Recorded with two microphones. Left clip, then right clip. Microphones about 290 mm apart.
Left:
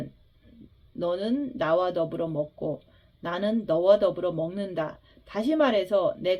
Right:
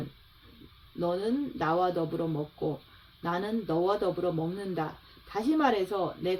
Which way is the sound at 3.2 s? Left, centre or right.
Left.